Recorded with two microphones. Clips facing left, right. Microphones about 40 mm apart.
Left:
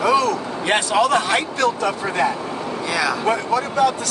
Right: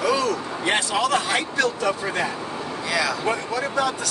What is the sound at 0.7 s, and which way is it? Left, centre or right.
Speech, left.